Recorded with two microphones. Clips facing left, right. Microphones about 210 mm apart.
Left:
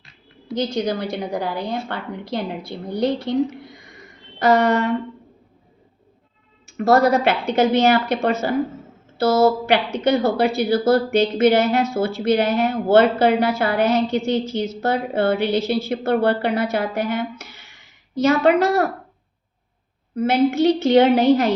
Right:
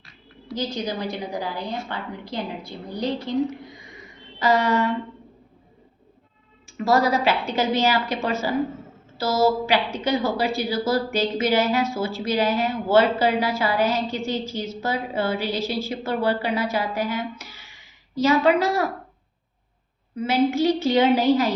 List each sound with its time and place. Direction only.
0.5 s a woman's voice: 70° left (ahead or behind)
1.9 s a woman's voice: 60° left (ahead or behind)
2.2 s a woman's voice: 75° left (ahead or behind)
4.4 s a woman's voice: 65° left (ahead or behind)
6.7 s a woman's voice: 65° left (ahead or behind)
20.1 s a woman's voice: 60° left (ahead or behind)